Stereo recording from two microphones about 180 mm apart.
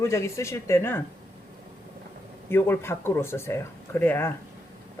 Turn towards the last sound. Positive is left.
turn(degrees=10)  # may be behind; listen again after turning